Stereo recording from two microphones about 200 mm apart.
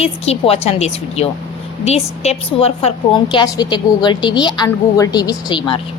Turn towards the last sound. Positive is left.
turn(degrees=25)  # may be behind; listen again after turning